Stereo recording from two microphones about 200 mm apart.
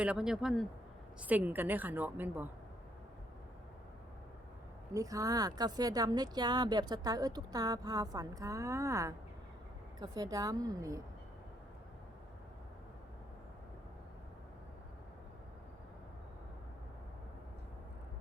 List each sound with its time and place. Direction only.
0.0 s a woman's voice: 5° right (ahead or behind)
4.9 s a woman's voice: 15° right (ahead or behind)